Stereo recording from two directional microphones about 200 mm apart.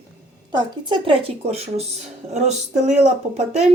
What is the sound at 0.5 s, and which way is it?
Speech, 25° right (ahead or behind).